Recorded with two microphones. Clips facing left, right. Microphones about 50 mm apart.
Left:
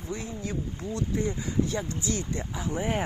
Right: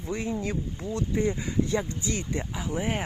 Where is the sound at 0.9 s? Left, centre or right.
Right.